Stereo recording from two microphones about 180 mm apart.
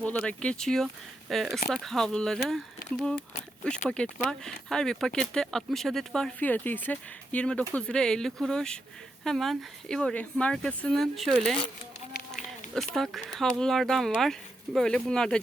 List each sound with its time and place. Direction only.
0.0 s speech: 5° left (ahead or behind)
3.8 s speech: 5° left (ahead or behind)